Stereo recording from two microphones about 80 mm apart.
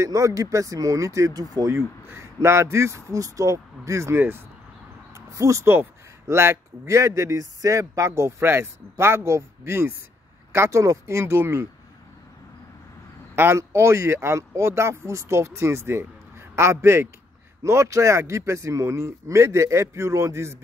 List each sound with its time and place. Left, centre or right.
0.0 s speech: right
13.4 s speech: right